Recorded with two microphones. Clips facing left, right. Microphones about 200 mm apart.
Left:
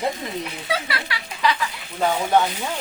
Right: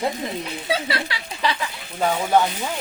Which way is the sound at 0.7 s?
25° right (ahead or behind).